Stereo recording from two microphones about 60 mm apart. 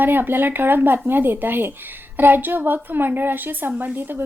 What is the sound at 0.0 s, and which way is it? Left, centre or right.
A woman's voice, right.